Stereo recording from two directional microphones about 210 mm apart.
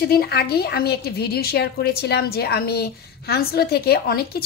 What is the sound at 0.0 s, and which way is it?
A woman's voice, 50° left (ahead or behind).